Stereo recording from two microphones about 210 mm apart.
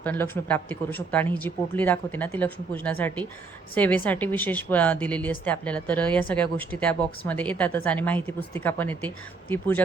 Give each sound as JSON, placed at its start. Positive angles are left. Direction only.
{"t": 0.0, "sound": "a woman's voice", "side_deg": 10}